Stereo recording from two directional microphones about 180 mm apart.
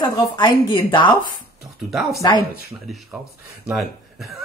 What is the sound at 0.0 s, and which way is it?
Speech, 25° left (ahead or behind).